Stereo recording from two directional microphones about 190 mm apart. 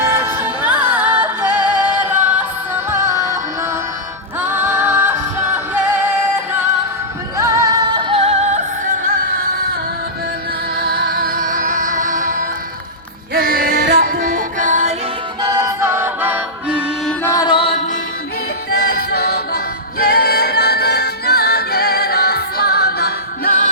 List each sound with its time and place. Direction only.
0.0 s music: 10° right (ahead or behind)
4.4 s music: 10° right (ahead or behind)
8.2 s music: 35° right (ahead or behind)
10.8 s music: 55° right (ahead or behind)
15.4 s music: 20° right (ahead or behind)
17.1 s music: 15° left (ahead or behind)
19.1 s music: 55° left (ahead or behind)